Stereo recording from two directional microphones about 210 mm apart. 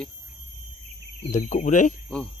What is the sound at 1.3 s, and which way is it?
Speech, 35° left (ahead or behind).